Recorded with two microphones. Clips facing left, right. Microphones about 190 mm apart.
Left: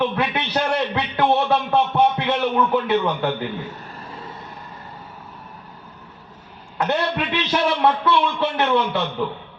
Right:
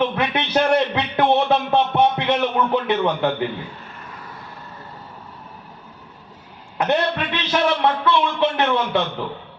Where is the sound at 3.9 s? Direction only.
30° left (ahead or behind).